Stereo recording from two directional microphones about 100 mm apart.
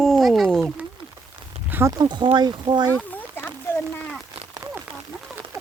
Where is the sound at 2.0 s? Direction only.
50° right (ahead or behind).